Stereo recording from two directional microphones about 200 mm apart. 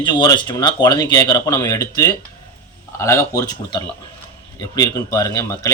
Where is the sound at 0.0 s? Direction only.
20° left (ahead or behind).